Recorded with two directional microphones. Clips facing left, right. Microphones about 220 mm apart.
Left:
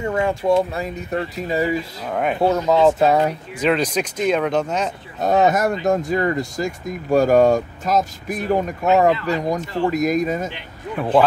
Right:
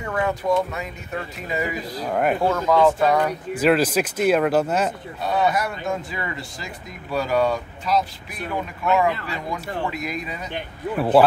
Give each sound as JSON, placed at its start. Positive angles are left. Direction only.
{"t": 0.0, "sound": "speech", "side_deg": 25}
{"t": 2.0, "sound": "speech", "side_deg": 0}
{"t": 2.7, "sound": "speech", "side_deg": 25}
{"t": 3.5, "sound": "speech", "side_deg": -5}
{"t": 5.2, "sound": "speech", "side_deg": 45}
{"t": 11.0, "sound": "speech", "side_deg": -5}